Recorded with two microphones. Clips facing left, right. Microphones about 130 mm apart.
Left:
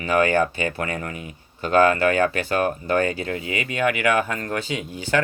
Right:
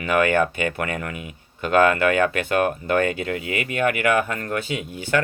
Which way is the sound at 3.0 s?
35° left (ahead or behind).